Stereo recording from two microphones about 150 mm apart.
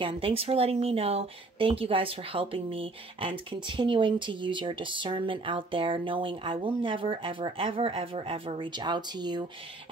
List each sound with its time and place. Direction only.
0.0 s speech: 40° right (ahead or behind)